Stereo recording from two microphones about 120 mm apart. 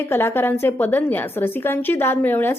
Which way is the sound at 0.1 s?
20° left (ahead or behind).